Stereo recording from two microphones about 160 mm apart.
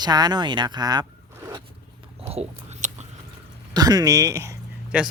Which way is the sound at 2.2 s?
40° right (ahead or behind).